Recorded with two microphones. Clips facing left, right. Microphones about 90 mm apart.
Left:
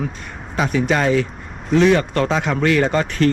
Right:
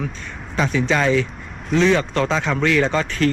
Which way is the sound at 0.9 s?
45° left (ahead or behind).